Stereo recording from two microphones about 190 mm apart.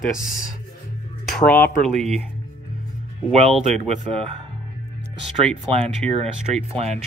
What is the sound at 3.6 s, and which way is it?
Speech, 35° right (ahead or behind).